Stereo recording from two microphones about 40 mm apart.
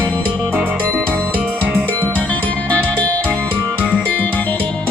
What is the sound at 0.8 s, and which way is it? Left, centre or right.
Music, left.